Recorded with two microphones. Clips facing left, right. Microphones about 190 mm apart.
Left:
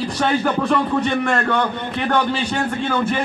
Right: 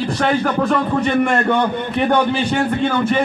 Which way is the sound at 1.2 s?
15° right (ahead or behind).